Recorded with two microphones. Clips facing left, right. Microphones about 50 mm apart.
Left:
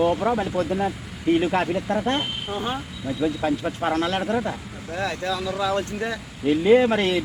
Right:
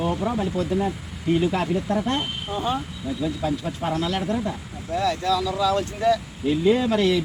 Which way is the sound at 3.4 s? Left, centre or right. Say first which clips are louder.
Left 2 dB; left.